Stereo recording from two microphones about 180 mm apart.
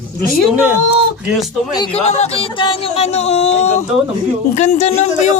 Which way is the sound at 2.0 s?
35° left (ahead or behind).